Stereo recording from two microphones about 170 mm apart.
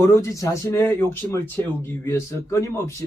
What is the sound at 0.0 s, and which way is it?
Speech, 15° left (ahead or behind).